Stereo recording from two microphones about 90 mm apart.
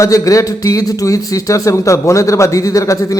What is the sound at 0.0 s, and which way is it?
A man's voice, 40° left (ahead or behind).